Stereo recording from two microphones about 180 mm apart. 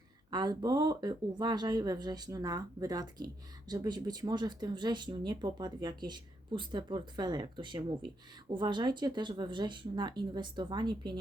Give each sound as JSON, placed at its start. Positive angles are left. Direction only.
{"t": 0.3, "sound": "speech", "side_deg": -20}